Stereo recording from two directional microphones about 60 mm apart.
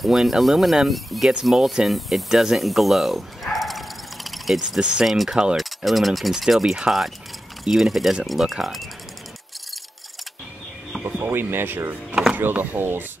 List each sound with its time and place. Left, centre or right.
0.0 s speech: centre
4.6 s speech: centre
11.1 s speech: right